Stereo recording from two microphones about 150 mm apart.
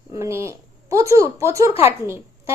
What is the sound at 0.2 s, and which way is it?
A woman's voice, 20° right (ahead or behind).